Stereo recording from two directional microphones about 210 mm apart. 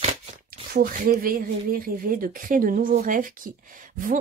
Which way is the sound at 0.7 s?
45° right (ahead or behind).